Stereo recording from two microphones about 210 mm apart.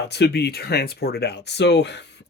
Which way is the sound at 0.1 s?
50° left (ahead or behind).